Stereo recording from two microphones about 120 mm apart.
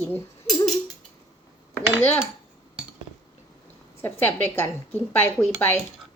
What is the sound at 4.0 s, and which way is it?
A woman's voice, 20° left (ahead or behind).